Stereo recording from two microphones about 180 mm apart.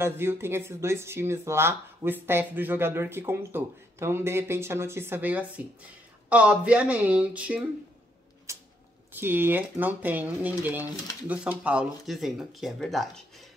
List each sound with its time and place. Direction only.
0.0 s speech: 15° right (ahead or behind)
8.5 s a sound: 15° right (ahead or behind)
9.1 s speech: 10° right (ahead or behind)